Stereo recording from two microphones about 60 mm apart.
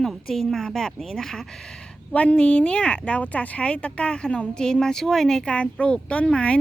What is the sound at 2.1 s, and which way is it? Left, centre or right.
Speech, centre.